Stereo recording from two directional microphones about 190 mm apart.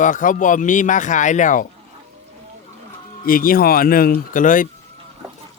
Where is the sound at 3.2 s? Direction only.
50° left (ahead or behind).